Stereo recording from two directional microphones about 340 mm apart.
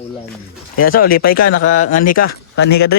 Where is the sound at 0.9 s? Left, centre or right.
Left.